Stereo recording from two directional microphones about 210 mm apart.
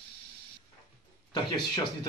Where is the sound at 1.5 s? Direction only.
20° left (ahead or behind).